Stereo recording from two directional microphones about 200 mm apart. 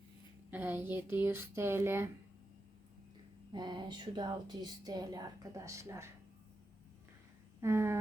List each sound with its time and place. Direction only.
0.5 s speech: 10° right (ahead or behind)
3.5 s a woman's voice: 20° right (ahead or behind)
7.6 s speech: 15° right (ahead or behind)